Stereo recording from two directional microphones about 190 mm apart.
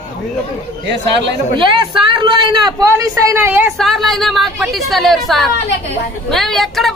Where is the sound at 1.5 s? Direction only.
25° right (ahead or behind).